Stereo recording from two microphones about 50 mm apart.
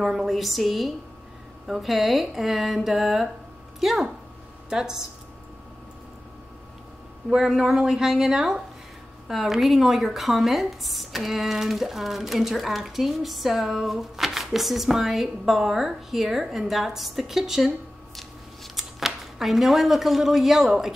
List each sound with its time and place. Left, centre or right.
0.0 s speech: centre
7.2 s speech: centre
18.1 s scissors: centre